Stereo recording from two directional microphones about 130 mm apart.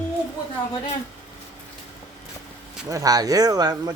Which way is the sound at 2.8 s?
25° right (ahead or behind).